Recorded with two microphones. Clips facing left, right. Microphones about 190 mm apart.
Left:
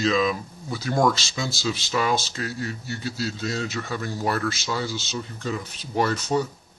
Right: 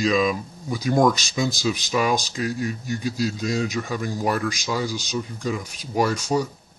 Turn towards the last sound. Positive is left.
turn(degrees=-10)  # may be behind; listen again after turning